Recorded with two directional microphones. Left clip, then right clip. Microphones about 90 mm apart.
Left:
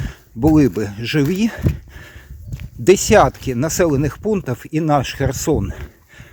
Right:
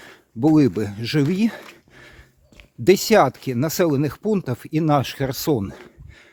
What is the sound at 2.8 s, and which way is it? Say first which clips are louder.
Speech: left 4 dB; 20° right (ahead or behind).